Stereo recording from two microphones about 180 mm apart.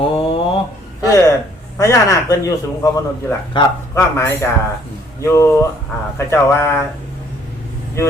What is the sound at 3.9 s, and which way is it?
A man's voice, 15° left (ahead or behind).